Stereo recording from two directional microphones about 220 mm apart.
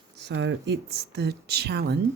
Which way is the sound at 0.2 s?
50° right (ahead or behind).